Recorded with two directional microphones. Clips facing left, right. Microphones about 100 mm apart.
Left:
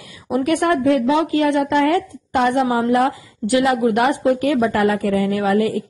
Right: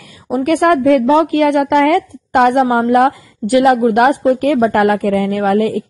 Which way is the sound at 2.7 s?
50° right (ahead or behind).